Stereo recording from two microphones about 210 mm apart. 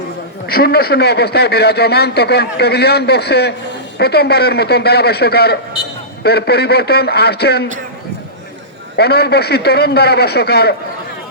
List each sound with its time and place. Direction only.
0.4 s a man's voice: 50° left (ahead or behind)
9.0 s a man's voice: 50° left (ahead or behind)